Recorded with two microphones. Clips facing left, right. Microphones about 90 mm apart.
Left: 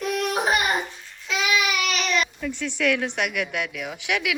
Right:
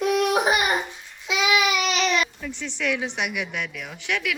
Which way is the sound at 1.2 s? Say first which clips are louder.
Right 2 dB; 20° right (ahead or behind).